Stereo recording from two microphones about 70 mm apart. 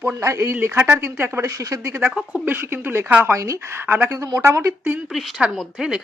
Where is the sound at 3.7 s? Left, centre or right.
Right.